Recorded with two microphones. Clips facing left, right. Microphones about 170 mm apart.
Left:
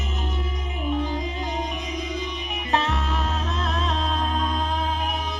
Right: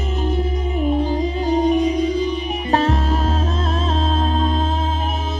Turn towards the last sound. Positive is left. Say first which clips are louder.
# right 6 dB
turn(degrees=-25)  # may be behind; listen again after turning